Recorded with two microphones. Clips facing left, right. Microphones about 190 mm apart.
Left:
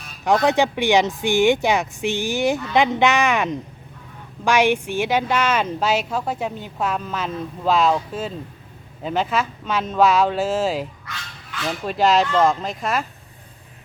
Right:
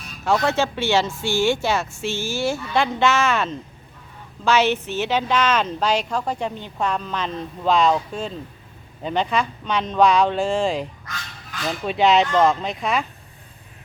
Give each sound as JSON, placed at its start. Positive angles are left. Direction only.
{"t": 0.3, "sound": "speech", "side_deg": 15}
{"t": 11.0, "sound": "dog", "side_deg": -40}
{"t": 11.9, "sound": "speech", "side_deg": 0}